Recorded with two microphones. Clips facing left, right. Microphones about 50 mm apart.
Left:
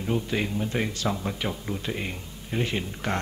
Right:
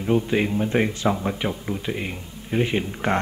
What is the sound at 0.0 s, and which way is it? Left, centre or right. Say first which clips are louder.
A man's voice: right 6 dB; centre.